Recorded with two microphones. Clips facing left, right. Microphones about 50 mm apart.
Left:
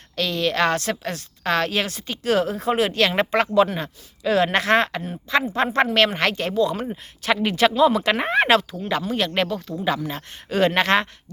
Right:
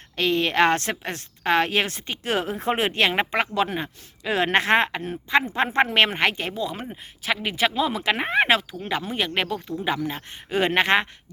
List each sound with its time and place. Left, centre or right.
0.2 s a woman's voice: right